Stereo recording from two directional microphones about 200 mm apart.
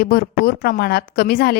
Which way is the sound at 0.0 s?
50° left (ahead or behind).